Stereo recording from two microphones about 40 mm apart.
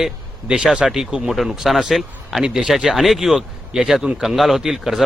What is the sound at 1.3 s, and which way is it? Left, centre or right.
A man's voice, centre.